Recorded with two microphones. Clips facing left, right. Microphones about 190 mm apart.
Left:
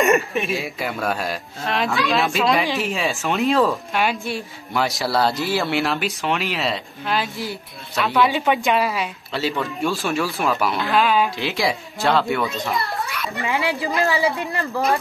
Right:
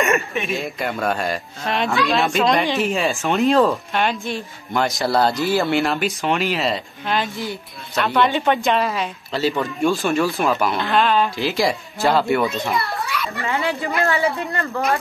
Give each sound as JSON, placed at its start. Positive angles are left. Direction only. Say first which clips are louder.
{"t": 0.0, "sound": "speech", "louder": "left 2 dB", "side_deg": 0}
{"t": 13.4, "sound": "speech", "louder": "left 1 dB", "side_deg": 15}